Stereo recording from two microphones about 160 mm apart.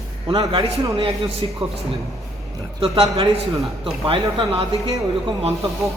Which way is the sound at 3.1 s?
25° right (ahead or behind).